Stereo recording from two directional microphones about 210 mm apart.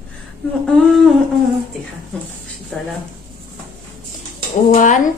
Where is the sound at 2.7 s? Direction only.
Centre (ahead or behind).